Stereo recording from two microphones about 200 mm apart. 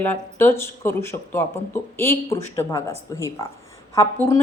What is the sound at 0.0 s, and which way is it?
A woman's voice, 10° left (ahead or behind).